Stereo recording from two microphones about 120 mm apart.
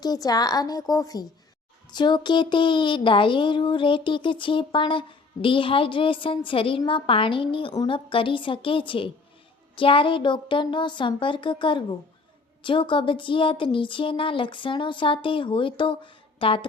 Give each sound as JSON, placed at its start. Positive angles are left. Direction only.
{"t": 0.0, "sound": "a woman's voice", "side_deg": 35}